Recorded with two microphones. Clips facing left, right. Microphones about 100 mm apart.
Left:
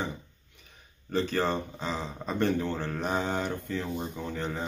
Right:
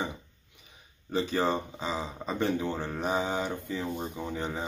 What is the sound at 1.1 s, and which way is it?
Speech, 10° right (ahead or behind).